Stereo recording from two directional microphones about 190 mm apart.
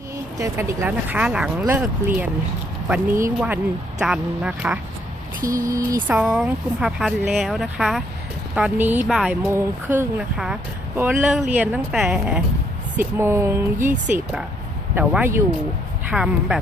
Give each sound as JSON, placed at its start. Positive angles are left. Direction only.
{"t": 0.3, "sound": "speech", "side_deg": -15}
{"t": 5.4, "sound": "speech", "side_deg": -15}
{"t": 6.1, "sound": "speech", "side_deg": -5}
{"t": 14.9, "sound": "speech", "side_deg": -10}